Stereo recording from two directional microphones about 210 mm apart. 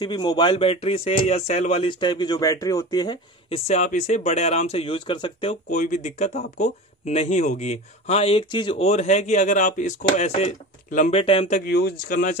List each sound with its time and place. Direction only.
0.0 s speech: 20° left (ahead or behind)
5.7 s speech: 40° left (ahead or behind)
11.6 s speech: 50° left (ahead or behind)